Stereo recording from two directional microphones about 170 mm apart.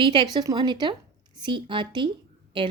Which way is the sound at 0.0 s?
30° right (ahead or behind).